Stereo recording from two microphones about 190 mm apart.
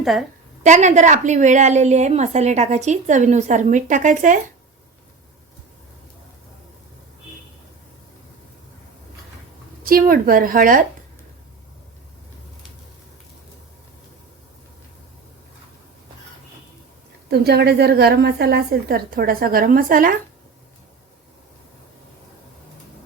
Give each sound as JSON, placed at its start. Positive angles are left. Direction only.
{"t": 0.0, "sound": "a woman's voice", "side_deg": 0}
{"t": 0.6, "sound": "a woman's voice", "side_deg": -40}
{"t": 9.8, "sound": "speech", "side_deg": -50}
{"t": 17.2, "sound": "a woman's voice", "side_deg": -55}